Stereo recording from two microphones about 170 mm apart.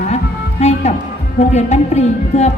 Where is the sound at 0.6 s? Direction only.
40° left (ahead or behind).